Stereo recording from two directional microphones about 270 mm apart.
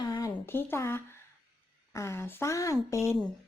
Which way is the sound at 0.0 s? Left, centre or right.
Centre.